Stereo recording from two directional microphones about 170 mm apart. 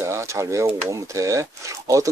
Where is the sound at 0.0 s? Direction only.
15° right (ahead or behind).